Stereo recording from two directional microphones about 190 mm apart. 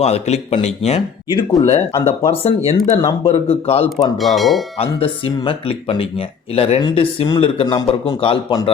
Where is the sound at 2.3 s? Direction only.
30° left (ahead or behind).